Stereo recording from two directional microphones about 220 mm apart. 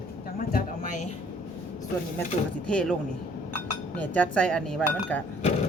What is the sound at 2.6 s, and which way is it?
Speech, 5° left (ahead or behind).